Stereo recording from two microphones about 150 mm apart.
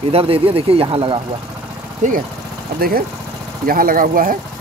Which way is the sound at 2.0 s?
55° right (ahead or behind).